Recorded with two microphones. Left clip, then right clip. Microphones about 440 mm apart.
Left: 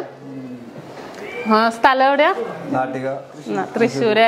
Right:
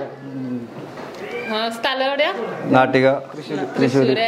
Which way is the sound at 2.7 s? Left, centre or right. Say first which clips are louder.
Right 9 dB; right.